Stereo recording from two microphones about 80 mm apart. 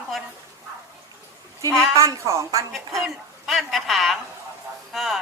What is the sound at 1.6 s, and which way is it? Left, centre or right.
A woman's voice, right.